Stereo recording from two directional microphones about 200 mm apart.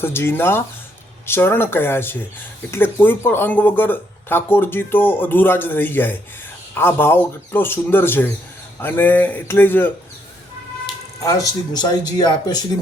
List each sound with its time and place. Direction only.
0.0 s speech: 10° left (ahead or behind)